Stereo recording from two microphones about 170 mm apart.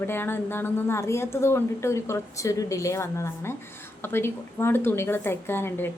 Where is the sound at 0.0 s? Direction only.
15° left (ahead or behind).